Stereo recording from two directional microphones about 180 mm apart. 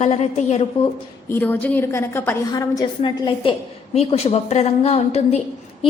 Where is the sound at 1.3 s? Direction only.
10° left (ahead or behind).